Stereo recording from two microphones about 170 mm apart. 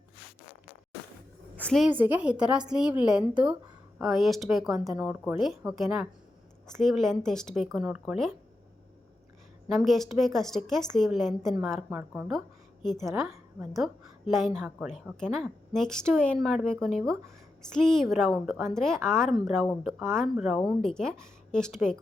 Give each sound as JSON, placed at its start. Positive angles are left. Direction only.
{"t": 1.5, "sound": "a woman's voice", "side_deg": 5}
{"t": 1.9, "sound": "speech", "side_deg": -10}
{"t": 9.7, "sound": "a woman's voice", "side_deg": 0}
{"t": 14.3, "sound": "speech", "side_deg": 0}